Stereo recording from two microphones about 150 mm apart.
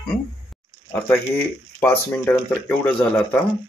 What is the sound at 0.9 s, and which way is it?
Speech, 10° left (ahead or behind).